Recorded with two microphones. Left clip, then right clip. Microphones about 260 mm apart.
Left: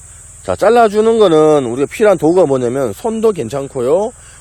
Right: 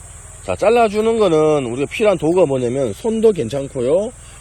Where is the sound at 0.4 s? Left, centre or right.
Left.